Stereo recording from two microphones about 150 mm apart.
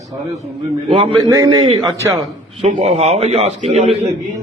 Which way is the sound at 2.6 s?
45° right (ahead or behind).